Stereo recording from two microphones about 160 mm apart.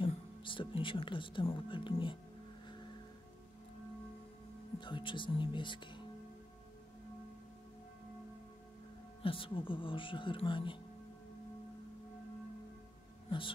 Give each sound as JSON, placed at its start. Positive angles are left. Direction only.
{"t": 0.0, "sound": "speech", "side_deg": 30}
{"t": 4.7, "sound": "speech", "side_deg": 30}
{"t": 9.2, "sound": "speech", "side_deg": 35}